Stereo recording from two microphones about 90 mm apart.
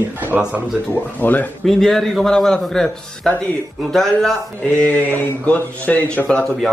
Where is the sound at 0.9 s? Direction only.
20° left (ahead or behind).